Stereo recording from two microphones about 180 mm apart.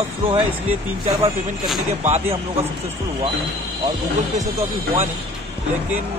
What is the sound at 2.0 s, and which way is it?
Speech, 40° right (ahead or behind).